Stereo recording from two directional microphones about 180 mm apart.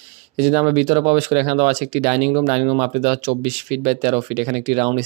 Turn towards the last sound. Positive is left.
turn(degrees=-40)  # may be behind; listen again after turning